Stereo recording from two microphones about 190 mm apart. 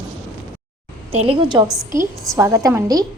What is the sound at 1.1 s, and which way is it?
Speech, 30° right (ahead or behind).